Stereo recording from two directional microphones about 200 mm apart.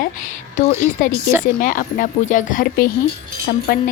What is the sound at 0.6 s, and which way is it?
Speech, 40° left (ahead or behind).